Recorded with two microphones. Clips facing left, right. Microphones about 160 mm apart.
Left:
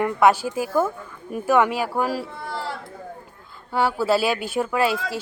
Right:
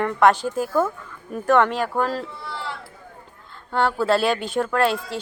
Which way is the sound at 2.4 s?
40° left (ahead or behind).